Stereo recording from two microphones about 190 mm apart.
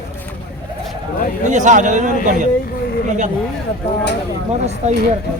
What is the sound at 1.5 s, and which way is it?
Speech, 40° right (ahead or behind).